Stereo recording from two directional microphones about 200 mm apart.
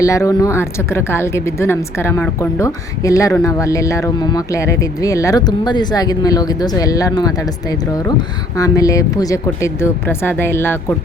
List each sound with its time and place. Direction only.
0.0 s speech: 15° left (ahead or behind)
8.5 s speech: 15° left (ahead or behind)